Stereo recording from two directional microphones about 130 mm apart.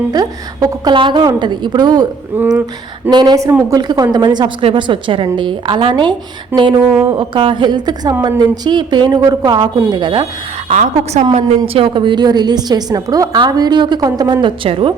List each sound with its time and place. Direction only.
0.1 s a woman's voice: 30° right (ahead or behind)
2.3 s speech: 15° right (ahead or behind)
3.1 s a woman's voice: 30° right (ahead or behind)
10.7 s a woman's voice: 70° right (ahead or behind)
11.3 s a woman's voice: 45° right (ahead or behind)
14.4 s a woman's voice: 45° right (ahead or behind)